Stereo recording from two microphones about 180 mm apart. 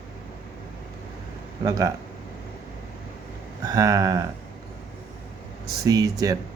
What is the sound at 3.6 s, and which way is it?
Speech, 20° right (ahead or behind).